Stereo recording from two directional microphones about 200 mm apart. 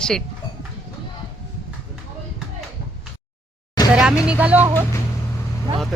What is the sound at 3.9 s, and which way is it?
Vehicle, 5° right (ahead or behind).